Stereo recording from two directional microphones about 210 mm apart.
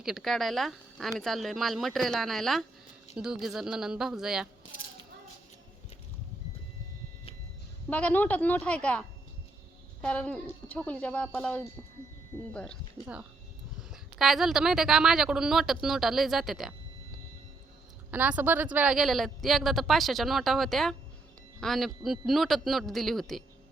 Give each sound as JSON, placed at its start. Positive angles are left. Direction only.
{"t": 0.0, "sound": "a woman's voice", "side_deg": 0}
{"t": 7.9, "sound": "speech", "side_deg": 5}
{"t": 13.0, "sound": "speech", "side_deg": 20}
{"t": 13.9, "sound": "a woman's voice", "side_deg": 0}
{"t": 18.1, "sound": "a woman's voice", "side_deg": -5}